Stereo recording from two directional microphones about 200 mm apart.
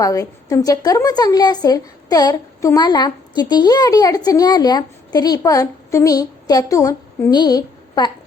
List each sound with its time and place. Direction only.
0.0 s a woman's voice: 15° left (ahead or behind)